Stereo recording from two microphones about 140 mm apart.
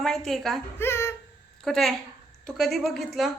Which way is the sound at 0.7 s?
15° left (ahead or behind).